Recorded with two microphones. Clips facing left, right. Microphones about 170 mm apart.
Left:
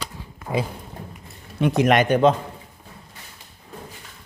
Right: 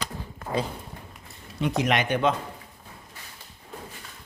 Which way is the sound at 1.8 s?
50° left (ahead or behind).